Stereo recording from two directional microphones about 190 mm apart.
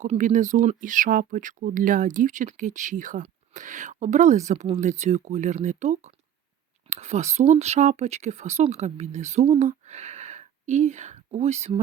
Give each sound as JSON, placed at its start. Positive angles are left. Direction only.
{"t": 0.0, "sound": "speech", "side_deg": -40}